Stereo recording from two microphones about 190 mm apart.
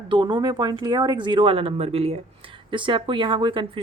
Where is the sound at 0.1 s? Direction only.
25° right (ahead or behind).